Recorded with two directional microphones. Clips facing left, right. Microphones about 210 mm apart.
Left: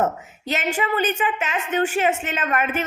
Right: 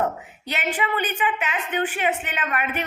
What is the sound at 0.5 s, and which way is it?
A woman's voice, 45° left (ahead or behind).